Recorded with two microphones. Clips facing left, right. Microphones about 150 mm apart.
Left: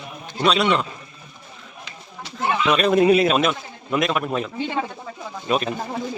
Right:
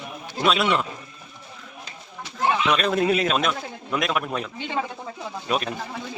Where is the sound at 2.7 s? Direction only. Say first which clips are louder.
Left 5 dB; 10° left (ahead or behind).